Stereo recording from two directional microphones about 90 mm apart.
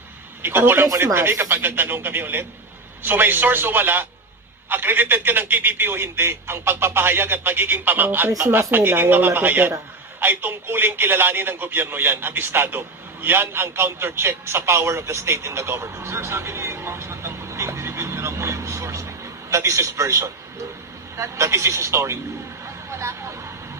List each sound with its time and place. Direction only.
0.4 s a man's voice: 25° right (ahead or behind)
22.6 s vehicle: 30° right (ahead or behind)